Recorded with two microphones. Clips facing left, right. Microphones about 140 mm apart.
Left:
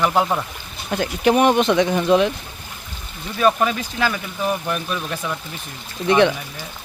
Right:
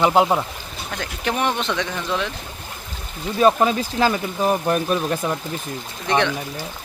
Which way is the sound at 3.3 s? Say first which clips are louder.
Right 2 dB; 30° right (ahead or behind).